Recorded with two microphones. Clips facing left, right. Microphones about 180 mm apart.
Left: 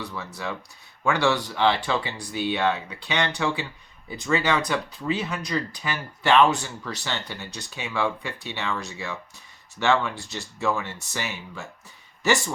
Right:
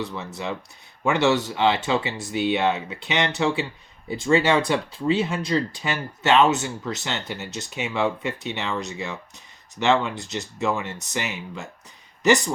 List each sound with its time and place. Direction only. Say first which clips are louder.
0.0 s speech: right 3 dB; 20° right (ahead or behind)